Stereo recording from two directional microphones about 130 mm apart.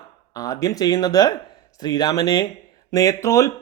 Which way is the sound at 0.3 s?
25° left (ahead or behind).